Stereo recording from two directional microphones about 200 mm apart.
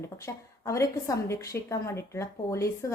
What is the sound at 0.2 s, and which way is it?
A woman's voice, 15° left (ahead or behind).